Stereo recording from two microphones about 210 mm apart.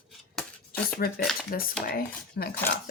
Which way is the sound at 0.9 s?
45° left (ahead or behind).